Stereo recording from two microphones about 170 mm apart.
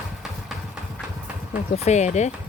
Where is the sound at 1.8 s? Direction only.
40° left (ahead or behind).